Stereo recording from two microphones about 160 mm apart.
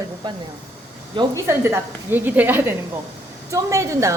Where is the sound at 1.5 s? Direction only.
15° right (ahead or behind).